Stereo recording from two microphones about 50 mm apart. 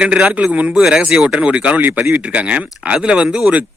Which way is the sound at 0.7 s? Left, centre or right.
Centre.